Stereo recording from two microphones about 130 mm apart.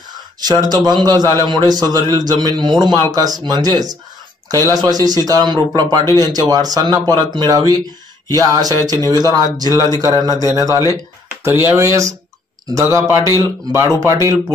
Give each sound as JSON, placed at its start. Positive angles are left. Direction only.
{"t": 0.1, "sound": "a man's voice", "side_deg": -30}